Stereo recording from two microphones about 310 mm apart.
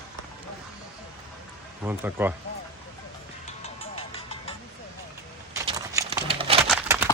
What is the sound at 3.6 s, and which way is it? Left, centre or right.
Music, centre.